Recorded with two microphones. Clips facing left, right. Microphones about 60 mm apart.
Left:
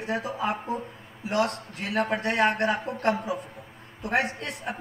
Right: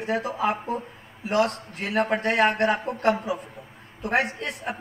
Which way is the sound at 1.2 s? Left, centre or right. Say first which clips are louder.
Right 3 dB; right.